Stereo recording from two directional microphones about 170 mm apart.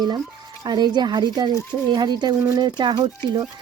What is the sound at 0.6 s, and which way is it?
Speech, 25° right (ahead or behind).